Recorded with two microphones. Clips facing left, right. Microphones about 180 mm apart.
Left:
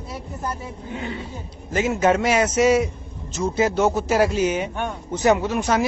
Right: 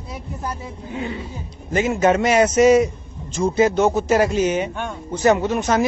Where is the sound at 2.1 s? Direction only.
5° left (ahead or behind).